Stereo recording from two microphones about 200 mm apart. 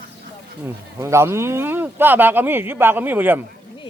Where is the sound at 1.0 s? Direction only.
15° right (ahead or behind).